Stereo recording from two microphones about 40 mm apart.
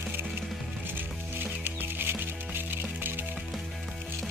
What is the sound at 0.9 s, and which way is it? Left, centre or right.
Music, right.